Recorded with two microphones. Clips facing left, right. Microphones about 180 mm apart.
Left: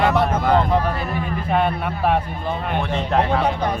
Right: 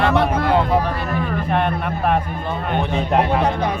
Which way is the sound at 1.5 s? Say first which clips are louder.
Left 2 dB; 5° left (ahead or behind).